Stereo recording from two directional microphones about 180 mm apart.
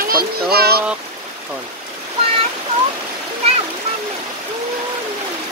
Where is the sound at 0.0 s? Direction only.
55° right (ahead or behind).